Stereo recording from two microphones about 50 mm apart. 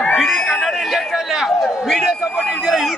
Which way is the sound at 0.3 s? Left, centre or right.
Left.